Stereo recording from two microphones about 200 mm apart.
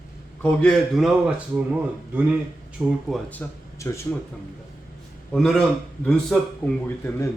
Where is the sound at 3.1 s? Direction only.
10° left (ahead or behind).